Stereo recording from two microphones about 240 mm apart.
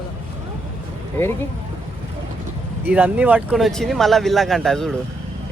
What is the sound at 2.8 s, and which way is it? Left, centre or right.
Speech, centre.